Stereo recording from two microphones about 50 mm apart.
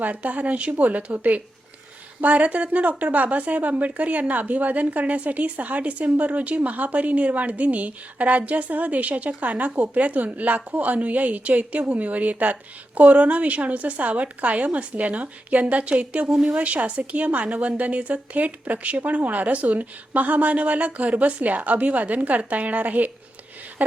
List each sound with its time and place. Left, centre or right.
0.0 s a woman's voice: right
16.3 s speech: centre
16.6 s a woman's voice: right